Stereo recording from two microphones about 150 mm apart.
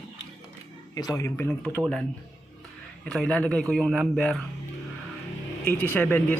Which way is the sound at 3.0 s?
10° left (ahead or behind).